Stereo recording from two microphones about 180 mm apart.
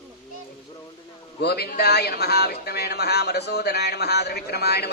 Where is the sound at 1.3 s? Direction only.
60° left (ahead or behind).